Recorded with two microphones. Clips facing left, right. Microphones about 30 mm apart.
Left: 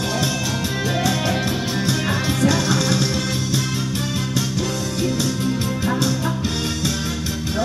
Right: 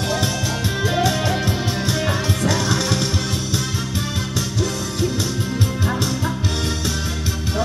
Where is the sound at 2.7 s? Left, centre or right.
Centre.